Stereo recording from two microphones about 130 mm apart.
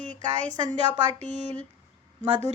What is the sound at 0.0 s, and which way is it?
A woman's voice, 65° right (ahead or behind).